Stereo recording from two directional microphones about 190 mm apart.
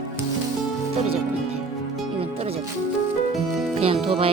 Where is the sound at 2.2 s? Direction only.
30° right (ahead or behind).